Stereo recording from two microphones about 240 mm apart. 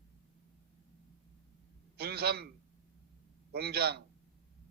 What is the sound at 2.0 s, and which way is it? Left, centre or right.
Speech, right.